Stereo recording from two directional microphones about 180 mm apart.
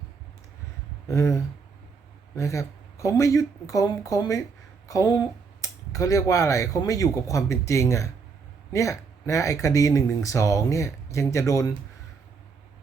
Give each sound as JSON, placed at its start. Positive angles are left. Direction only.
{"t": 1.0, "sound": "speech", "side_deg": 15}